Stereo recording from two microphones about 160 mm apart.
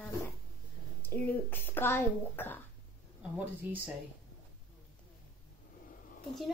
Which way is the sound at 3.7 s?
10° right (ahead or behind).